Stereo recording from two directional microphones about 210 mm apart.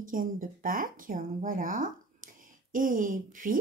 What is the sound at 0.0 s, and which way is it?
A woman's voice, 40° right (ahead or behind).